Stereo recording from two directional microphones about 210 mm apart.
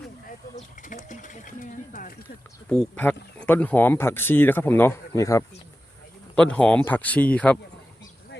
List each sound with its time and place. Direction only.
0.5 s a sound: 40° left (ahead or behind)
1.0 s sewing machine: 35° left (ahead or behind)
2.6 s a man's voice: 5° left (ahead or behind)